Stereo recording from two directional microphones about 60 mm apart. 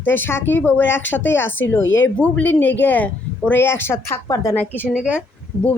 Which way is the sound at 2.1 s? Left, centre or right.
Left.